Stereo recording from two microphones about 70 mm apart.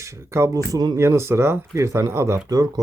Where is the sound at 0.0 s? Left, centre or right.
Right.